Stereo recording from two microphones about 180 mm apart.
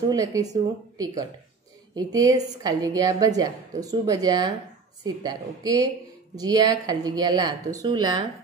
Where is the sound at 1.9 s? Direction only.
20° right (ahead or behind).